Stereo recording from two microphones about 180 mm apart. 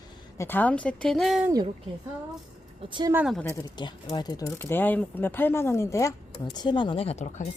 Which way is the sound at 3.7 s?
25° left (ahead or behind).